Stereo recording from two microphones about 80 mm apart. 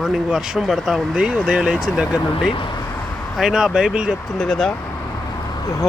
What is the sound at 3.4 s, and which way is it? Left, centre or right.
Speech, centre.